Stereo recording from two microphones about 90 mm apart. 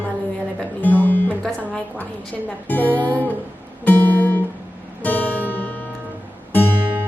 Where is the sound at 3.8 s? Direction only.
20° left (ahead or behind).